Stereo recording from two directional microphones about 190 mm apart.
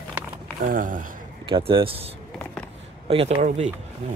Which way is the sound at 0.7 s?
45° right (ahead or behind).